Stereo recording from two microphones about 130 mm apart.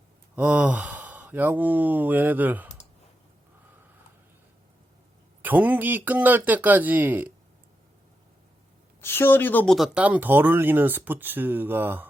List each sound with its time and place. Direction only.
0.3 s speech: 10° right (ahead or behind)
5.4 s speech: 15° right (ahead or behind)
9.0 s a woman's voice: 15° left (ahead or behind)
9.6 s speech: centre (ahead or behind)